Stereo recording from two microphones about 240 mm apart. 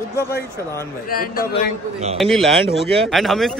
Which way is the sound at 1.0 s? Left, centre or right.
Left.